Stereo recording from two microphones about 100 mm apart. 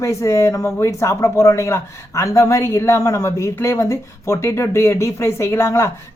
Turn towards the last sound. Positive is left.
turn(degrees=30)  # may be behind; listen again after turning